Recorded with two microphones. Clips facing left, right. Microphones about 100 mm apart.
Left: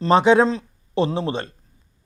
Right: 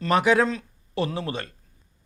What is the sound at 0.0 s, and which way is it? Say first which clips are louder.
Speech: left 5 dB; 25° left (ahead or behind).